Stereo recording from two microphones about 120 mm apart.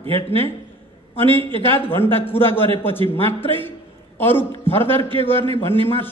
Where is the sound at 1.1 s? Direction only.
20° left (ahead or behind).